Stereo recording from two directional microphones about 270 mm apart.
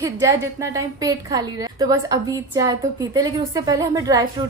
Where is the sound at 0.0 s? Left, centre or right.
Centre.